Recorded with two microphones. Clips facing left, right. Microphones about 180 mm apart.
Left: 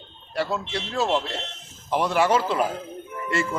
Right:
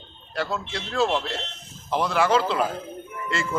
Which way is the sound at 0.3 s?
10° left (ahead or behind).